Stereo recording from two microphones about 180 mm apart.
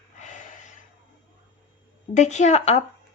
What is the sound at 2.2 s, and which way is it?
Speech, 40° left (ahead or behind).